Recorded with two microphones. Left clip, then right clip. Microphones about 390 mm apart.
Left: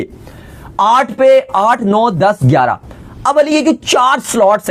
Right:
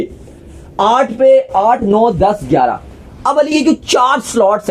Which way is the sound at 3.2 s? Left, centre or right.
Centre.